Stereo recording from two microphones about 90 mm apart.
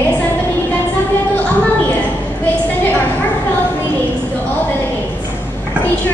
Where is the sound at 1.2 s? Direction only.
20° left (ahead or behind).